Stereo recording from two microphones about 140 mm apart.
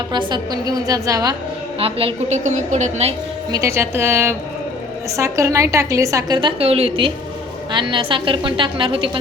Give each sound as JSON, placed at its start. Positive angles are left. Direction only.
{"t": 0.1, "sound": "a woman's voice", "side_deg": -30}
{"t": 1.8, "sound": "a woman's voice", "side_deg": -40}
{"t": 2.4, "sound": "a woman's voice", "side_deg": -60}
{"t": 3.5, "sound": "a woman's voice", "side_deg": -20}
{"t": 6.6, "sound": "a woman's voice", "side_deg": -45}